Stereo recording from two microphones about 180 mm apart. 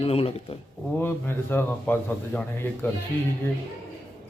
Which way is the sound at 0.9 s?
10° left (ahead or behind).